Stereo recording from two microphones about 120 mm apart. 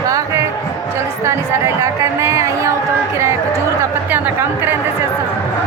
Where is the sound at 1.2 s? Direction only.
25° right (ahead or behind).